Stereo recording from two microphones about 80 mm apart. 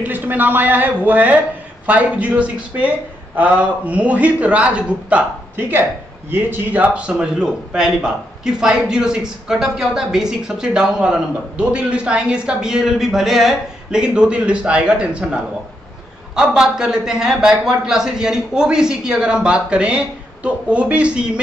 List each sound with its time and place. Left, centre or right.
0.0 s a man's voice: right